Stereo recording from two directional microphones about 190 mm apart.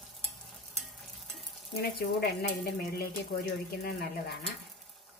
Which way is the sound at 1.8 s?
55° left (ahead or behind).